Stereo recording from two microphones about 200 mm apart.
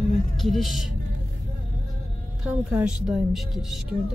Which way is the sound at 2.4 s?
5° right (ahead or behind).